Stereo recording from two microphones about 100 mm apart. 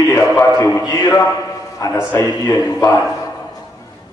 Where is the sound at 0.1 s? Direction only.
30° left (ahead or behind).